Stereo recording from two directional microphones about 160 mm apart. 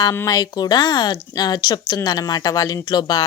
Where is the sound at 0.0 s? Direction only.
20° left (ahead or behind).